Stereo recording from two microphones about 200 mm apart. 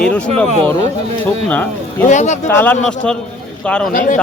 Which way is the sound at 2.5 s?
10° left (ahead or behind).